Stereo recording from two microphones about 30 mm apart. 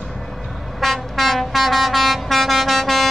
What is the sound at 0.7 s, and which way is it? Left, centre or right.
Vehicle, centre.